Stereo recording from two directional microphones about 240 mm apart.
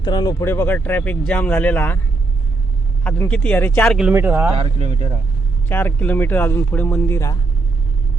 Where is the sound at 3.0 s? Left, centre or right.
Centre.